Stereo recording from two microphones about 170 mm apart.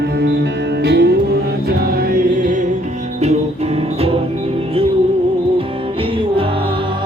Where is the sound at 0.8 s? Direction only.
75° right (ahead or behind).